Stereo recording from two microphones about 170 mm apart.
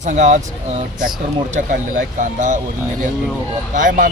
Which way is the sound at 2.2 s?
50° right (ahead or behind).